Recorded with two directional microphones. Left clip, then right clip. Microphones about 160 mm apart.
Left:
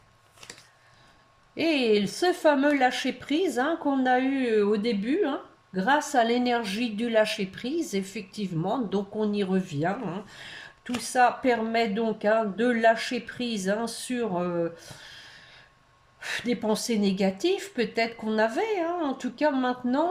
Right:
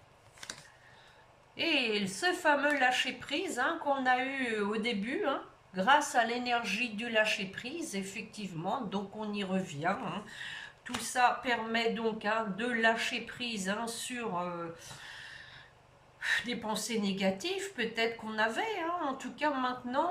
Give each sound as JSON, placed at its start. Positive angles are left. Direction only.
{"t": 1.5, "sound": "a woman's voice", "side_deg": 35}
{"t": 16.2, "sound": "a woman's voice", "side_deg": 35}